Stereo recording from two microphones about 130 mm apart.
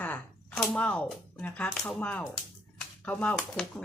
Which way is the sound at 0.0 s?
10° left (ahead or behind).